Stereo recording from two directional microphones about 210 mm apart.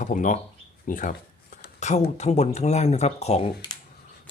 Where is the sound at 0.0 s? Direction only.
35° left (ahead or behind).